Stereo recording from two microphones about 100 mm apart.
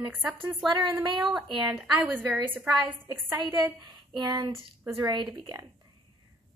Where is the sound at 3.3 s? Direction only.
45° right (ahead or behind).